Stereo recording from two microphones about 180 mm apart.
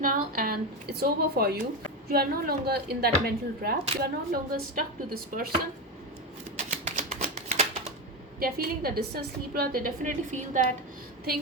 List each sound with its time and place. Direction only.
0.0 s a woman's voice: 55° right (ahead or behind)
6.7 s typewriter: 40° right (ahead or behind)
8.4 s a woman's voice: 55° right (ahead or behind)